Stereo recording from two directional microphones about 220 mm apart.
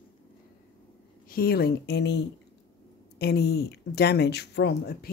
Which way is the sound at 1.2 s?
45° left (ahead or behind).